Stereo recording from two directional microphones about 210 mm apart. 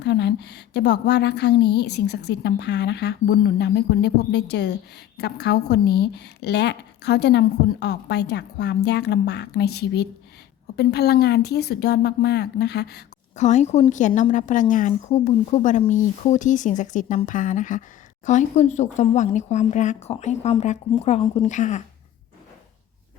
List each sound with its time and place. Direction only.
0.0 s a woman's voice: 55° left (ahead or behind)
13.3 s a woman's voice: 35° left (ahead or behind)